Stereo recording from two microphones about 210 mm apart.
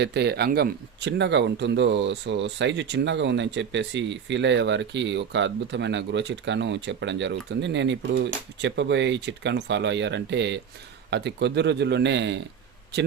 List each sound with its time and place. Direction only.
0.0 s speech: 50° right (ahead or behind)